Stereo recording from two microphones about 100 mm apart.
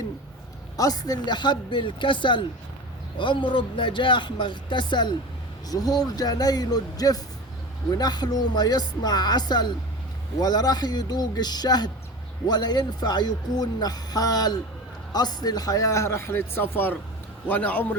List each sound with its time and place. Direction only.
0.8 s a man's voice: 40° left (ahead or behind); by 17.9 s 15° left (ahead or behind)